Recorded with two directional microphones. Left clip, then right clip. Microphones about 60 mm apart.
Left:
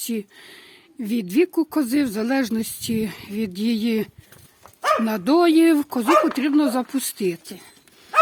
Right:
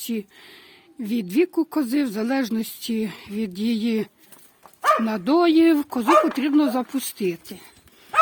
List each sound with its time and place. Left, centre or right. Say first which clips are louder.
0.0 s speech: left 1 dB; left